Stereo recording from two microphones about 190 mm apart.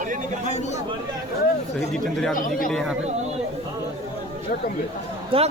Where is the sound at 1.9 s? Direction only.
Centre (ahead or behind).